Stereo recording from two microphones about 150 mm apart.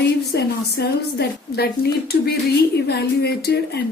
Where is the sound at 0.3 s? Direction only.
90° left.